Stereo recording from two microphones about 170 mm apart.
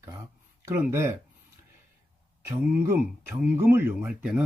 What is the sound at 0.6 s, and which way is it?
Speech, 15° right (ahead or behind).